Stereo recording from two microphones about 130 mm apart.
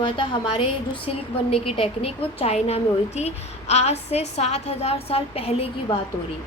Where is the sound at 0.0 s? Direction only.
40° left (ahead or behind).